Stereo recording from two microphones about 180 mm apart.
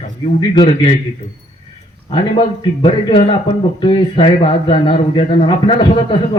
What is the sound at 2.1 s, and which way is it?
A man's voice, 30° left (ahead or behind).